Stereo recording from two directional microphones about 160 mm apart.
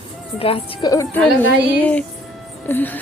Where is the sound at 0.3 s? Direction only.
35° left (ahead or behind).